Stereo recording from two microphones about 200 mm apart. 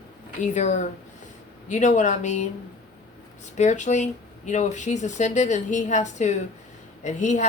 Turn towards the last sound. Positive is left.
turn(degrees=35)  # may be behind; listen again after turning